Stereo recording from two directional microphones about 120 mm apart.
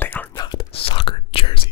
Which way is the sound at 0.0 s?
15° left (ahead or behind).